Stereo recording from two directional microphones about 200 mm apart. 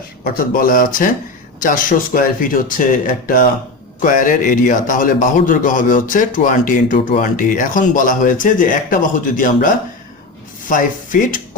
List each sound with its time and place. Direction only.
0.3 s a man's voice: 45° left (ahead or behind)